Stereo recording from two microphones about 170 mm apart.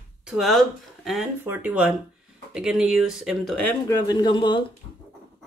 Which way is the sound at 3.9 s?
25° left (ahead or behind).